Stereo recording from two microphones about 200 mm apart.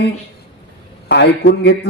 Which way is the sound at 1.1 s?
55° left (ahead or behind).